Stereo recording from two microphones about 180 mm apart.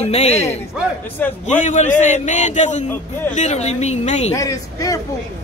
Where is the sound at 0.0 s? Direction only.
35° left (ahead or behind).